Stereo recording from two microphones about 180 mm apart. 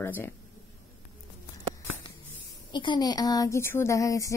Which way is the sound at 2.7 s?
25° left (ahead or behind).